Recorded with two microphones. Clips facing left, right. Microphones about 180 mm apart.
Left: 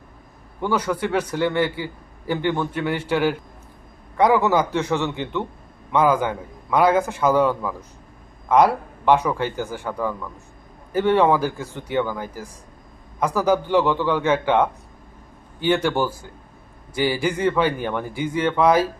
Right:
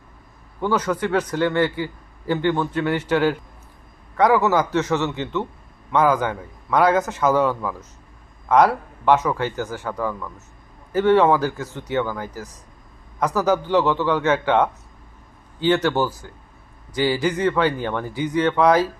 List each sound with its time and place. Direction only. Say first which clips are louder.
0.9 s a man's voice: right 1 dB; 10° left (ahead or behind)